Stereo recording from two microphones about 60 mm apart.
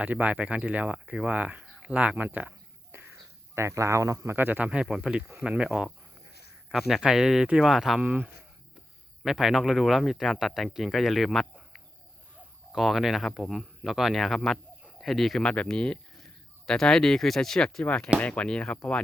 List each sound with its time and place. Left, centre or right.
0.0 s speech: right
3.5 s speech: right
4.4 s speech: right
4.7 s speech: centre
6.7 s speech: centre
8.0 s speech: right
9.2 s speech: centre
12.7 s speech: centre
15.4 s speech: centre
18.2 s speech: centre